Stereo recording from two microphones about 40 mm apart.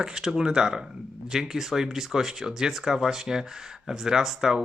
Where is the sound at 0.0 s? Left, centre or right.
Centre.